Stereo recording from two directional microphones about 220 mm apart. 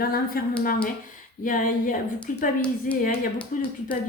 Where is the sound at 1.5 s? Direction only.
40° left (ahead or behind).